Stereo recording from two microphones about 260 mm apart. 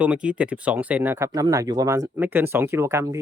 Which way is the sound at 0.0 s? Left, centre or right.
Centre.